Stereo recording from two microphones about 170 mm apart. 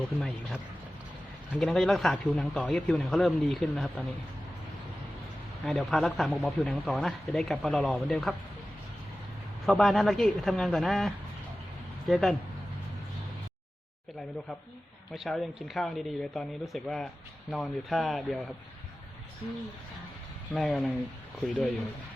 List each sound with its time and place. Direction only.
0.2 s speech: centre (ahead or behind)
5.6 s speech: centre (ahead or behind)
9.6 s speech: centre (ahead or behind)
15.1 s speech: centre (ahead or behind)
20.5 s speech: centre (ahead or behind)